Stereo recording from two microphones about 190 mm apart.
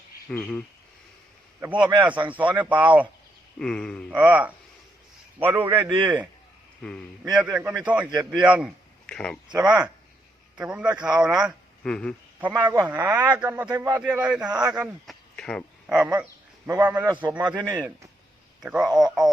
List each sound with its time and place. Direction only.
0.3 s speech: 10° left (ahead or behind)
1.6 s a man's voice: 5° right (ahead or behind)
3.6 s a man's voice: 5° left (ahead or behind)
4.1 s a man's voice: 10° right (ahead or behind)
5.7 s a man's voice: 25° right (ahead or behind)
6.8 s a man's voice: 5° left (ahead or behind)
7.5 s a man's voice: 10° right (ahead or behind)
9.0 s a sound: 5° left (ahead or behind)
9.6 s a man's voice: 5° right (ahead or behind)
12.4 s a man's voice: 10° right (ahead or behind)
16.1 s a man's voice: 15° right (ahead or behind)
18.6 s a man's voice: 5° right (ahead or behind)